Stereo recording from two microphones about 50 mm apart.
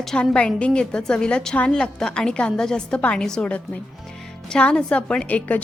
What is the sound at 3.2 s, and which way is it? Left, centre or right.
Speech, centre.